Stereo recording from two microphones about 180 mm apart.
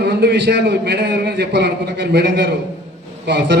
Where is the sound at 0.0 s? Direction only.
70° right (ahead or behind).